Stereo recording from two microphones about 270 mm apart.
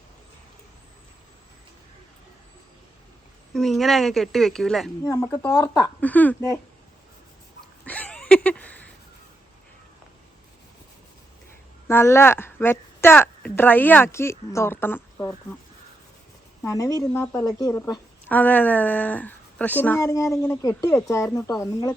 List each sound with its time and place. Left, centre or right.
3.5 s a woman's voice: centre
5.0 s a woman's voice: centre
7.9 s a sound: centre
11.9 s a woman's voice: centre
16.6 s a woman's voice: centre